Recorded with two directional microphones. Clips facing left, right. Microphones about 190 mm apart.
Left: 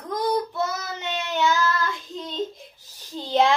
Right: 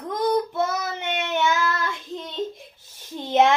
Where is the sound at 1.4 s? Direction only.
25° right (ahead or behind).